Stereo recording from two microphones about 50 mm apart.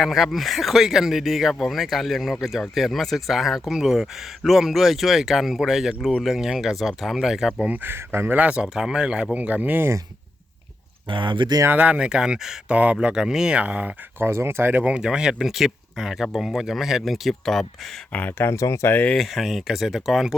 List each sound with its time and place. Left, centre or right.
0.0 s speech: centre
7.8 s speech: right
8.5 s speech: centre
9.3 s speech: right
11.7 s speech: right; by 12.5 s centre
12.6 s speech: right
13.6 s speech: right
14.2 s speech: right
14.8 s speech: centre
18.1 s speech: left
18.5 s speech: left
19.1 s speech: centre